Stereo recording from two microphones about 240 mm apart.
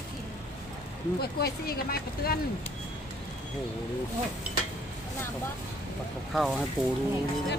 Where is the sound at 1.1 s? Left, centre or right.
Left.